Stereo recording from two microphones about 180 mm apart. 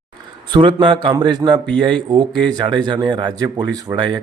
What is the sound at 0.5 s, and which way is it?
Speech, 30° right (ahead or behind).